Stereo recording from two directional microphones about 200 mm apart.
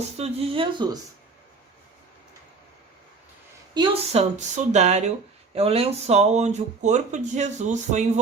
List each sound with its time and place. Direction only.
0.2 s speech: 30° right (ahead or behind)
3.8 s speech: 30° right (ahead or behind)